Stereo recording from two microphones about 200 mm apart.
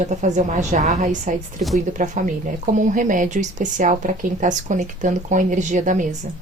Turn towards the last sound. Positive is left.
turn(degrees=-40)  # may be behind; listen again after turning